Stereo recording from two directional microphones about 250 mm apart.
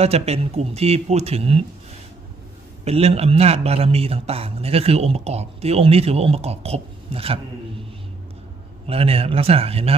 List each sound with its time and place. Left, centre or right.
0.0 s a man's voice: right
2.8 s a man's voice: right
8.8 s a man's voice: right